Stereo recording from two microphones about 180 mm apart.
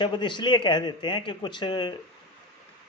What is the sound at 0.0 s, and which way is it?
A man's voice, 25° left (ahead or behind).